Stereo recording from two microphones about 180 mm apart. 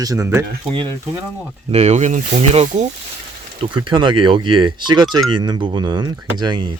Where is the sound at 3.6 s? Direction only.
25° right (ahead or behind).